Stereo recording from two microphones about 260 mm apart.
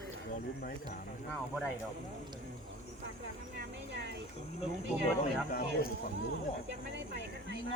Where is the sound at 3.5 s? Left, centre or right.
Right.